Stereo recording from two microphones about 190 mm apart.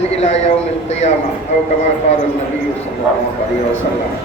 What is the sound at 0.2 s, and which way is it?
Speech, 35° left (ahead or behind).